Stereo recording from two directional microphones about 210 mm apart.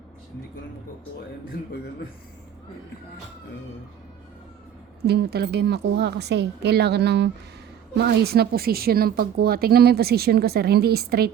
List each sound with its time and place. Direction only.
5.0 s a woman's voice: 50° right (ahead or behind)